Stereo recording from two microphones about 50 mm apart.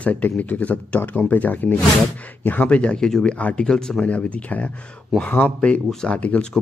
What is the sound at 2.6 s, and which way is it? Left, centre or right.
Speech, left.